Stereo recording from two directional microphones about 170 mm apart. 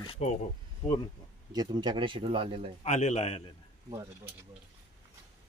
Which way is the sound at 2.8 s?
45° left (ahead or behind).